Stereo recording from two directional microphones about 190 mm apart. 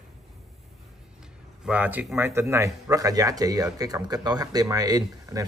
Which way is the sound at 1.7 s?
10° right (ahead or behind).